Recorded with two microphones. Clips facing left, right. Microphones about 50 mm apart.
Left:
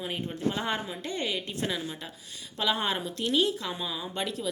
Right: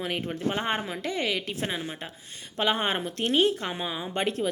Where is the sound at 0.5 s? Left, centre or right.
Right.